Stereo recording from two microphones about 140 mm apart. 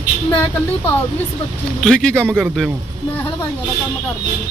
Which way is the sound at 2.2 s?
10° right (ahead or behind).